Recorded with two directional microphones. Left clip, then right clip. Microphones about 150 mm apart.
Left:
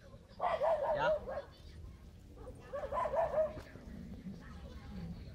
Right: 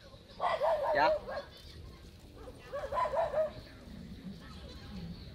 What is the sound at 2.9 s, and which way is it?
Dog, 20° left (ahead or behind).